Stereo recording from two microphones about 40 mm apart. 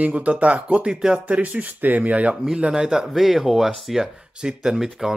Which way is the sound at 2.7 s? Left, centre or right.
Centre.